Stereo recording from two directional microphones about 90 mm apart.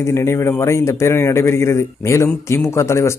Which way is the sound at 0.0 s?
30° left (ahead or behind).